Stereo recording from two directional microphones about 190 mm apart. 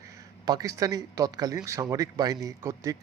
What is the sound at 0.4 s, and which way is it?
Speech, 20° right (ahead or behind).